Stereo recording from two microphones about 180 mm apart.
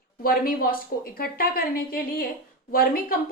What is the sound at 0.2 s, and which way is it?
A woman's voice, 55° left (ahead or behind).